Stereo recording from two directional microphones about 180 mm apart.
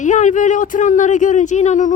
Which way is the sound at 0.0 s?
45° left (ahead or behind).